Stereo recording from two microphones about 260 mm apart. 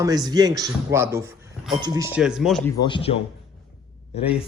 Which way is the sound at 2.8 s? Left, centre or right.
Centre.